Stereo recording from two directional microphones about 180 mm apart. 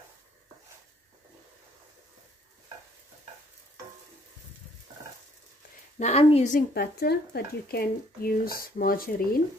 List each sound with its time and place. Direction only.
5.9 s a woman's voice: 35° left (ahead or behind)
6.7 s speech: 60° left (ahead or behind)